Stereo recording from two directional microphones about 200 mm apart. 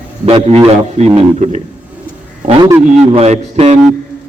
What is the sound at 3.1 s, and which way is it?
Speech, 35° right (ahead or behind).